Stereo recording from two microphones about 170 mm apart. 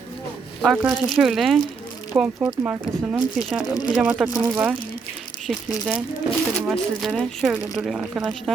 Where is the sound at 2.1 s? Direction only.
15° right (ahead or behind).